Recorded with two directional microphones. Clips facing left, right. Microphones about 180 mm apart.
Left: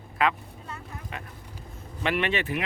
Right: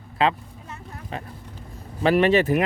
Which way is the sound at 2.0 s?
40° right (ahead or behind).